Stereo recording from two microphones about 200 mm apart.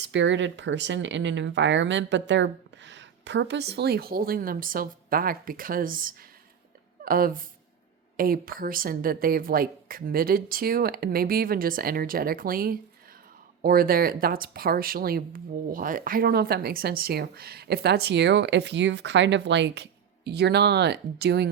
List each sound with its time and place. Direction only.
0.0 s speech: 65° right (ahead or behind)